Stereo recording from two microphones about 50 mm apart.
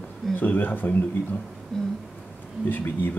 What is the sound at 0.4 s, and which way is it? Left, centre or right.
Speech, left.